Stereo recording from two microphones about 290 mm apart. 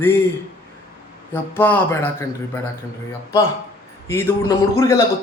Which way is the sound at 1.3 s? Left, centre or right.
Centre.